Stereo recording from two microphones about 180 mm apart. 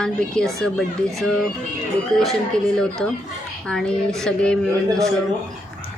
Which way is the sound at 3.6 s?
5° left (ahead or behind).